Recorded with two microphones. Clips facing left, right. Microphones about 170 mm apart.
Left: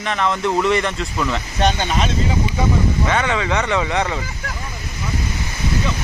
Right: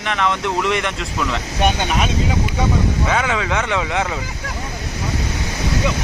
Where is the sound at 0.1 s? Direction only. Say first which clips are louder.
Left 1 dB; centre (ahead or behind).